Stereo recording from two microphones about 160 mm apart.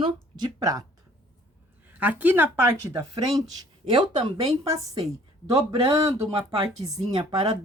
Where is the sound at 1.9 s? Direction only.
10° right (ahead or behind).